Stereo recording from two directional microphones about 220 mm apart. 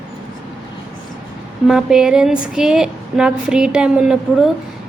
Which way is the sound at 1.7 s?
5° right (ahead or behind).